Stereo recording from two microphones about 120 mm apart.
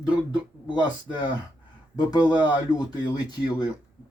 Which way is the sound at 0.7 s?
40° left (ahead or behind).